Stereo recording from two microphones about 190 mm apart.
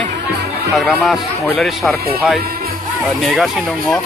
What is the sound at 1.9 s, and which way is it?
Speech, 55° right (ahead or behind).